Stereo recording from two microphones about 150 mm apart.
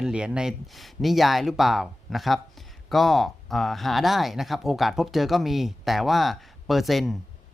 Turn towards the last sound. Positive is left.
turn(degrees=0)  # may be behind; listen again after turning